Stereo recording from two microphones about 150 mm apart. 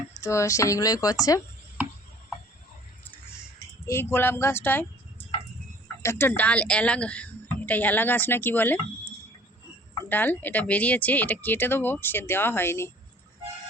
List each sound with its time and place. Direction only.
0.2 s speech: 20° left (ahead or behind)
3.6 s a woman's voice: 15° left (ahead or behind)
10.1 s a woman's voice: 10° left (ahead or behind)